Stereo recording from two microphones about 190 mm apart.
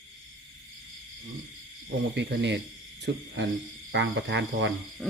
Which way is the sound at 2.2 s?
65° right (ahead or behind).